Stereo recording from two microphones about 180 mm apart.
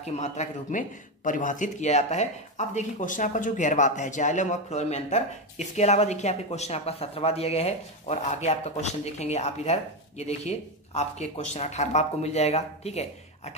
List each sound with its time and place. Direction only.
0.0 s a man's voice: 40° left (ahead or behind)